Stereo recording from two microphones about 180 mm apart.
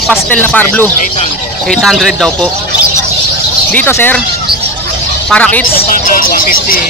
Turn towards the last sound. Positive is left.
turn(degrees=55)  # may be behind; listen again after turning